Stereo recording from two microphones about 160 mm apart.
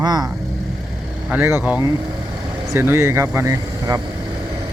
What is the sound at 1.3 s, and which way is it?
Speech, 15° right (ahead or behind).